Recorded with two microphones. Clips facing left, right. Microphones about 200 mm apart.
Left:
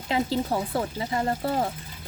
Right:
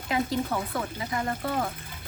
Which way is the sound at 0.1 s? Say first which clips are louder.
Left 2 dB; 30° left (ahead or behind).